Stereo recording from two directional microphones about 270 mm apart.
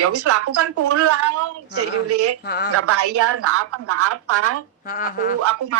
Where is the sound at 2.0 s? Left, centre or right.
Right.